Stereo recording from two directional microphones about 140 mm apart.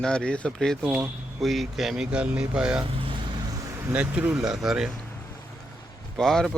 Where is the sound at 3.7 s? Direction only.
10° right (ahead or behind).